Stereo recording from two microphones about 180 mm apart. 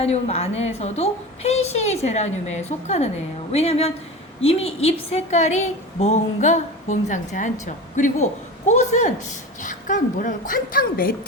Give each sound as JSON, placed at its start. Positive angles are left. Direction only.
{"t": 0.0, "sound": "a woman's voice", "side_deg": 35}